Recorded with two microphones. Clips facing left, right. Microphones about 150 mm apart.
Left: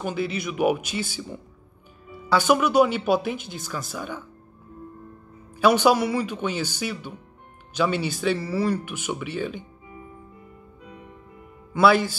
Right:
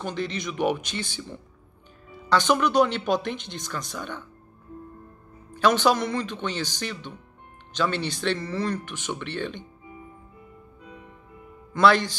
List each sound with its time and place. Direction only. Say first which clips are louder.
0.0 s speech: left 3 dB; 5° left (ahead or behind)
5.5 s speech: left 3 dB; 10° left (ahead or behind)
11.7 s speech: left 1 dB; 5° left (ahead or behind)